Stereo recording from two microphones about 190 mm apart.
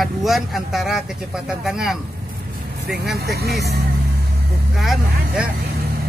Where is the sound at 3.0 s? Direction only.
55° right (ahead or behind).